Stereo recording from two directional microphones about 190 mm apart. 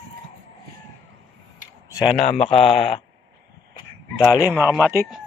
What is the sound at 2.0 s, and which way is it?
Speech, 35° left (ahead or behind).